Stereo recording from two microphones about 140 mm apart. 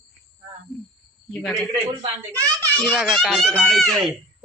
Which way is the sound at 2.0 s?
25° right (ahead or behind).